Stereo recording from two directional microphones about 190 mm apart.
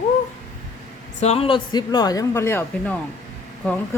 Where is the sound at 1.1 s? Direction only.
35° left (ahead or behind).